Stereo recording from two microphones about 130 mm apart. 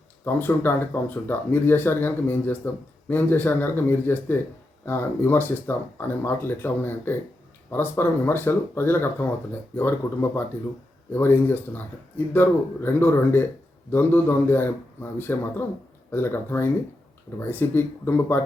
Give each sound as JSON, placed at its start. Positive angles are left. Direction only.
{"t": 0.3, "sound": "speech", "side_deg": 15}